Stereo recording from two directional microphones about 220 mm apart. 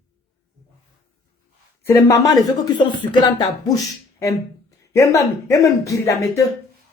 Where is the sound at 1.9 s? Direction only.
15° left (ahead or behind).